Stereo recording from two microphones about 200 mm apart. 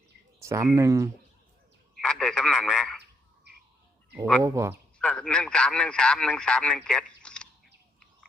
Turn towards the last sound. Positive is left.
turn(degrees=5)  # may be behind; listen again after turning